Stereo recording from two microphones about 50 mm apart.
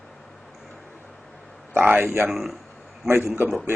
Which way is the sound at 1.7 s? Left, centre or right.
Right.